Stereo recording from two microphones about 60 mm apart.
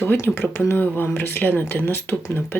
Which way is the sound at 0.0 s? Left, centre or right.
Left.